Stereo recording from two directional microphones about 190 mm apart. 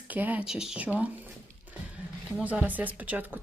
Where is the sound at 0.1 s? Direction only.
10° right (ahead or behind).